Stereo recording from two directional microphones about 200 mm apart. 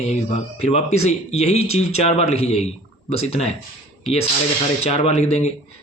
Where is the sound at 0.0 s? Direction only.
35° left (ahead or behind).